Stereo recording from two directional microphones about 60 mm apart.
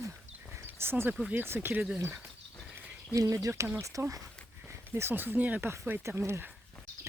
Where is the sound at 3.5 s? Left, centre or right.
Right.